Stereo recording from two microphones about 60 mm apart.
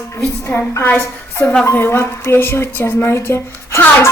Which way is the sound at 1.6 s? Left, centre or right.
Left.